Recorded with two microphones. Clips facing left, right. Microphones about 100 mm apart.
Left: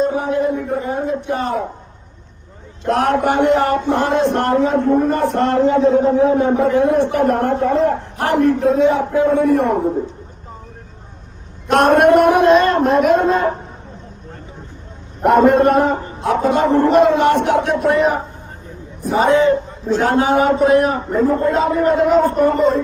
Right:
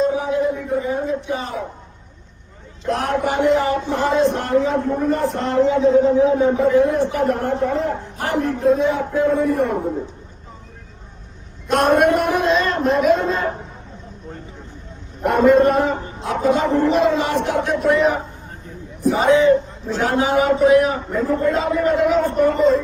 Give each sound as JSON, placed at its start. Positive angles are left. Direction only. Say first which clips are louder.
{"t": 0.0, "sound": "a sound", "louder": "left 1 dB", "side_deg": 55}
{"t": 2.8, "sound": "speech", "louder": "left 5 dB", "side_deg": 60}
{"t": 11.7, "sound": "speech", "louder": "left 4 dB", "side_deg": 65}
{"t": 15.4, "sound": "a man's voice", "louder": "even", "side_deg": 50}
{"t": 19.1, "sound": "a man's voice", "louder": "left 2 dB", "side_deg": 50}
{"t": 19.5, "sound": "a man's voice", "louder": "even", "side_deg": 35}